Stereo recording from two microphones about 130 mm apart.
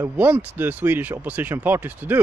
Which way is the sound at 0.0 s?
15° right (ahead or behind).